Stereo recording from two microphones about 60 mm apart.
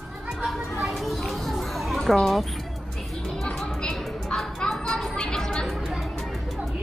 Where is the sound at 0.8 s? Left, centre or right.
Centre.